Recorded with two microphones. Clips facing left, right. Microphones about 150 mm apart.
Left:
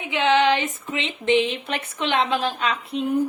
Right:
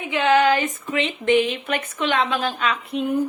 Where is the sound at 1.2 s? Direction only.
25° left (ahead or behind).